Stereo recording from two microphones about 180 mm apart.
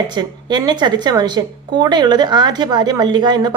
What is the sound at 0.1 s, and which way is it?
A woman's voice, 25° right (ahead or behind).